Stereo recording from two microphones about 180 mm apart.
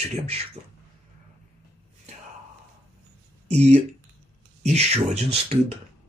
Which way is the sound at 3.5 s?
35° right (ahead or behind).